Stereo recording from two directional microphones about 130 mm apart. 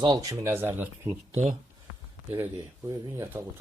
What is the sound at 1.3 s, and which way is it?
Speech, 60° right (ahead or behind).